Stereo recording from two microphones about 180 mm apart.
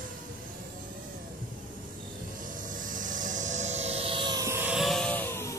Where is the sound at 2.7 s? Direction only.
45° right (ahead or behind); by 5.5 s 10° left (ahead or behind).